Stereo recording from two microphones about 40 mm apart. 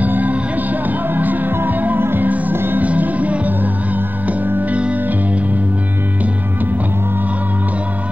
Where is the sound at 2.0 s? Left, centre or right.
Right.